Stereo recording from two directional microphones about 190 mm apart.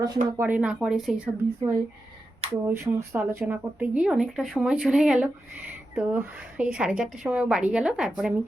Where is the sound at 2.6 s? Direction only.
15° right (ahead or behind).